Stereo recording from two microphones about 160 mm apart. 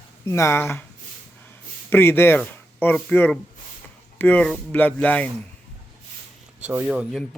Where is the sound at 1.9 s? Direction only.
15° left (ahead or behind).